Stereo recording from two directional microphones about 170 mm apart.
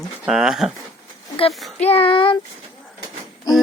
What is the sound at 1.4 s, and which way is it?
Speech, 35° left (ahead or behind).